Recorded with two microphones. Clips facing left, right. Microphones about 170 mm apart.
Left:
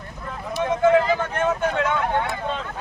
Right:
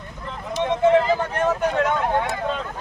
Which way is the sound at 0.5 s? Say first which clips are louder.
Even; 25° right (ahead or behind).